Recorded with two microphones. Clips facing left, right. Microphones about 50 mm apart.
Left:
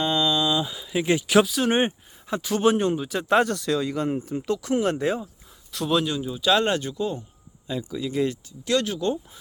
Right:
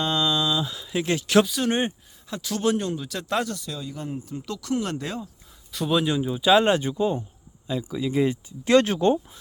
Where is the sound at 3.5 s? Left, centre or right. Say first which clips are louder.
Left 10 dB; left.